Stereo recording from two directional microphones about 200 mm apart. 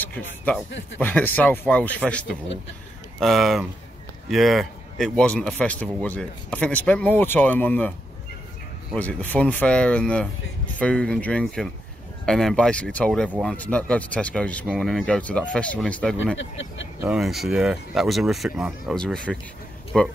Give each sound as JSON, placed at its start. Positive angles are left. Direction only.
{"t": 0.0, "sound": "speech", "side_deg": 10}
{"t": 8.9, "sound": "speech", "side_deg": 10}
{"t": 16.3, "sound": "speech", "side_deg": 70}
{"t": 17.1, "sound": "speech", "side_deg": 0}